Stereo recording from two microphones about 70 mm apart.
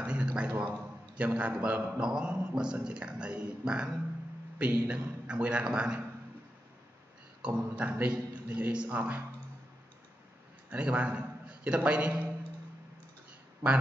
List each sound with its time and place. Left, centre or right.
0.0 s a man's voice: centre
7.4 s speech: centre
10.7 s a man's voice: centre